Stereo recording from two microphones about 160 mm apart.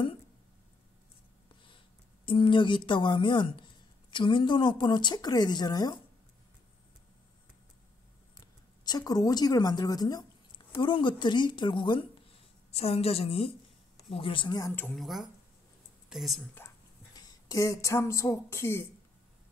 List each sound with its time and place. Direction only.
2.2 s speech: 30° left (ahead or behind)
8.4 s a woman's voice: 25° left (ahead or behind)
15.0 s speech: centre (ahead or behind)
17.1 s speech: 25° left (ahead or behind)